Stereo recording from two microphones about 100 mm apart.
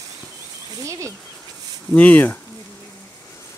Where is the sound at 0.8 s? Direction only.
30° right (ahead or behind).